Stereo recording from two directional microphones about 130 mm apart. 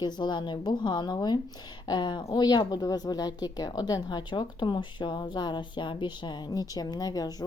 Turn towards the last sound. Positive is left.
turn(degrees=30)  # may be behind; listen again after turning